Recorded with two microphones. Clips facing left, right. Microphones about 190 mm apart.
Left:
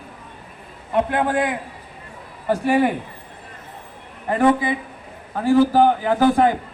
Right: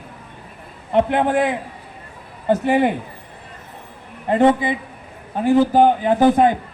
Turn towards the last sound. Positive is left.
turn(degrees=-20)  # may be behind; listen again after turning